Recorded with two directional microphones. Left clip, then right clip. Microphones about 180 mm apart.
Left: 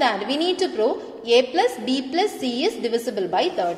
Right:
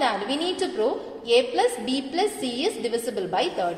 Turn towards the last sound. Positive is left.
turn(degrees=20)  # may be behind; listen again after turning